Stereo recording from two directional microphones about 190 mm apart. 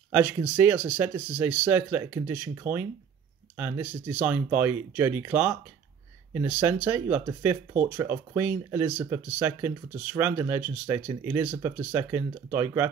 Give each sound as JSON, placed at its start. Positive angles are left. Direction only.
{"t": 0.1, "sound": "speech", "side_deg": -10}